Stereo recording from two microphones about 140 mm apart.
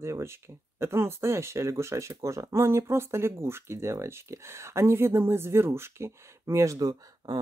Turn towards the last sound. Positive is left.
turn(degrees=-30)  # may be behind; listen again after turning